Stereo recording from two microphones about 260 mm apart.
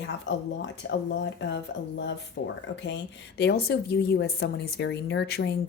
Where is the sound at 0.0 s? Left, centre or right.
Left.